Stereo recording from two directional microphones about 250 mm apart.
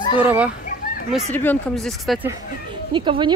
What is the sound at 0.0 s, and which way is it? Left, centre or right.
Children playing, centre.